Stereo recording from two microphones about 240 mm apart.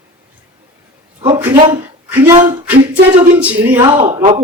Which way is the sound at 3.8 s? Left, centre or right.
Right.